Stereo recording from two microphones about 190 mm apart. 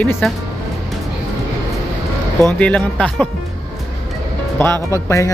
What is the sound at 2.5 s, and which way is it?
Speech, 5° left (ahead or behind).